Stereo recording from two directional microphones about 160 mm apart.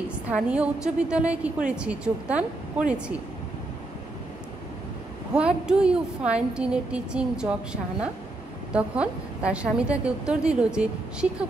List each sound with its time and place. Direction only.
0.3 s a woman's voice: 5° right (ahead or behind)
5.3 s a woman's voice: 5° right (ahead or behind)